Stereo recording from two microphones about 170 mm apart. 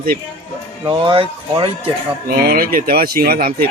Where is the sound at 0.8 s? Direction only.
30° right (ahead or behind).